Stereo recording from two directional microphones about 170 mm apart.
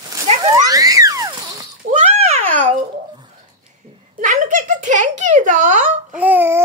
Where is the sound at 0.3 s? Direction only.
40° right (ahead or behind).